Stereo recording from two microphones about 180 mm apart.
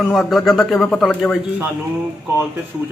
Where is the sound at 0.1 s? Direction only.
Centre (ahead or behind).